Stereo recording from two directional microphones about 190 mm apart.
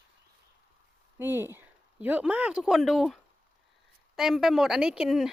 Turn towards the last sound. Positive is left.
turn(degrees=0)  # may be behind; listen again after turning